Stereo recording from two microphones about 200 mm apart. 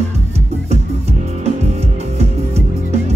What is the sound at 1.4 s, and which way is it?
Music, 30° right (ahead or behind).